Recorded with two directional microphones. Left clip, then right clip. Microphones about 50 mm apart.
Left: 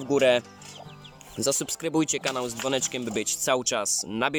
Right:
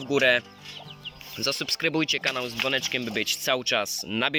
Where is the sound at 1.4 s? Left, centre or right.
Left.